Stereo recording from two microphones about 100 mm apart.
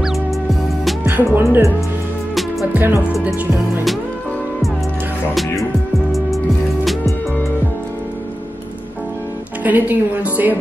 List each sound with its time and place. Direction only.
0.0 s music: centre (ahead or behind)
1.0 s speech: 20° right (ahead or behind)
2.7 s music: 20° right (ahead or behind)
6.1 s music: centre (ahead or behind)
9.6 s a woman's voice: 15° right (ahead or behind)